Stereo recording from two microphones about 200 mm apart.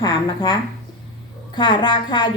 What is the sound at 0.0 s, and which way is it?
A woman's voice, 20° left (ahead or behind).